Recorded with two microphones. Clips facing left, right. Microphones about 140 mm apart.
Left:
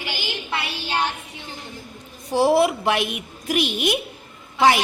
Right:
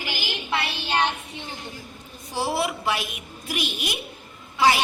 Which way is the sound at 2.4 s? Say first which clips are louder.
Left 8 dB; 60° left (ahead or behind).